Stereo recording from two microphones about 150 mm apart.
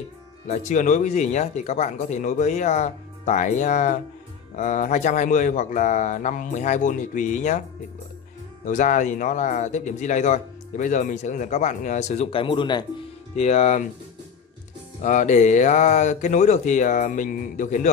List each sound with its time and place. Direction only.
0.5 s speech: 55° left (ahead or behind)
8.6 s speech: 55° left (ahead or behind); by 12.8 s 30° left (ahead or behind)
13.4 s speech: 50° left (ahead or behind)
15.0 s speech: 55° left (ahead or behind)